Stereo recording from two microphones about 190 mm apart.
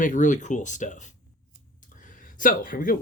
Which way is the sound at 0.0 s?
45° left (ahead or behind).